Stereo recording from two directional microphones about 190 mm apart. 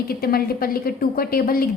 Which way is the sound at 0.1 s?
55° left (ahead or behind).